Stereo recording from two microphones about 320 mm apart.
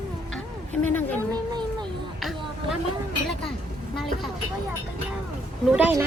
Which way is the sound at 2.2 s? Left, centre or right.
Centre.